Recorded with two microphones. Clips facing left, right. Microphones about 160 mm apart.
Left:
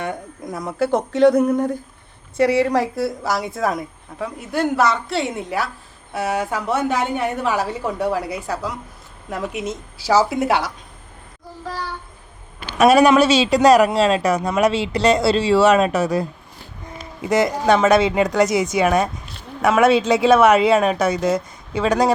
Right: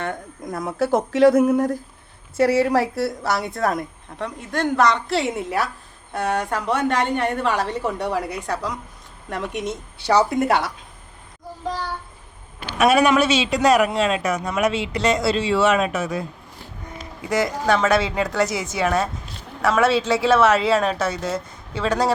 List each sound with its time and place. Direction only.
0.4 s a woman's voice: centre (ahead or behind)
12.8 s a man's voice: 40° left (ahead or behind)
17.2 s a woman's voice: 20° left (ahead or behind)